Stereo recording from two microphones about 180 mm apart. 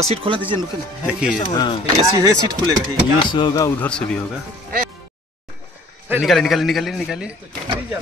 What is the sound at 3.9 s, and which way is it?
Speech, 5° left (ahead or behind).